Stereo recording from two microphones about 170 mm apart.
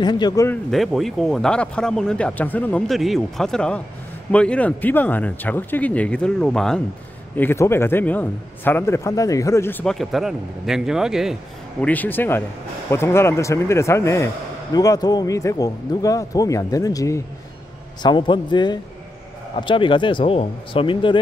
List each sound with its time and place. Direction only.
0.0 s speech: 25° left (ahead or behind)
0.7 s speech: centre (ahead or behind)
7.3 s speech: 15° left (ahead or behind); by 11.3 s 5° right (ahead or behind)
11.8 s speech: 10° left (ahead or behind); by 21.2 s 30° left (ahead or behind)